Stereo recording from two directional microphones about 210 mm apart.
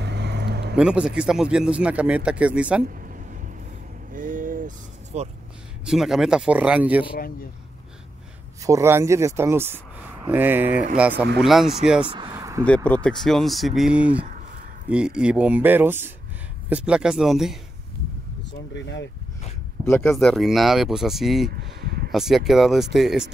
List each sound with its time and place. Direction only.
0.0 s a sound: 55° right (ahead or behind)
0.7 s speech: 5° right (ahead or behind)
4.1 s vehicle: 40° right (ahead or behind)
5.9 s speech: centre (ahead or behind)
8.6 s speech: 15° right (ahead or behind)
12.1 s a sound: 20° right (ahead or behind)
12.6 s speech: 5° left (ahead or behind)
18.5 s speech: 55° left (ahead or behind)
19.8 s speech: 10° left (ahead or behind)
21.5 s a sound: 45° right (ahead or behind)
22.1 s speech: centre (ahead or behind)